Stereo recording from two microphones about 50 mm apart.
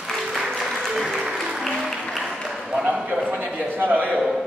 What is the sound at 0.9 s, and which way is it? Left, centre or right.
Applause, centre.